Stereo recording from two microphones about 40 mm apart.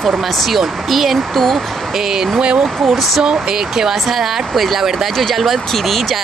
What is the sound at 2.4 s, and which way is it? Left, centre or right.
Speech, right.